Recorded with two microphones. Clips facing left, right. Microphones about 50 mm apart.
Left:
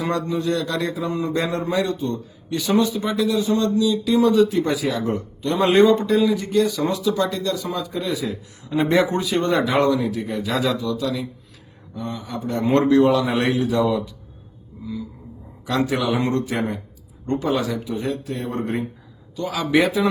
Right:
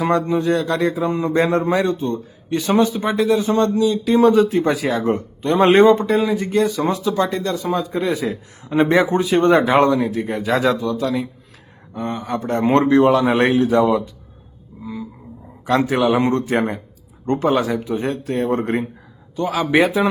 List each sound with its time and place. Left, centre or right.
0.0 s speech: right
11.9 s speech: right
12.7 s speech: right
15.6 s speech: right
16.5 s speech: right
19.4 s speech: right